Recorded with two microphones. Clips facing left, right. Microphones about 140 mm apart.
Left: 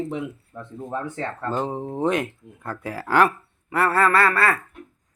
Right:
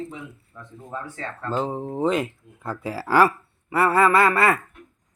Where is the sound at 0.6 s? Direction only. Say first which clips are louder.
Left 5 dB; 30° left (ahead or behind).